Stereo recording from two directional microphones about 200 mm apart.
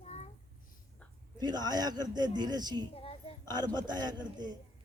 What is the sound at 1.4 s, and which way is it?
A man's voice, 20° right (ahead or behind).